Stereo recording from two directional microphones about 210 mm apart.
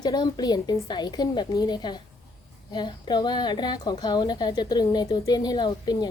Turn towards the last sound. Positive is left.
turn(degrees=20)  # may be behind; listen again after turning